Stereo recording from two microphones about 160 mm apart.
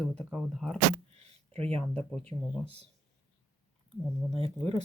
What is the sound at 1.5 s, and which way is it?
Speech, 40° right (ahead or behind).